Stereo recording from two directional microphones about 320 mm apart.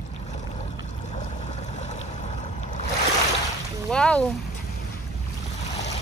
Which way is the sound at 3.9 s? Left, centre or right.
Centre.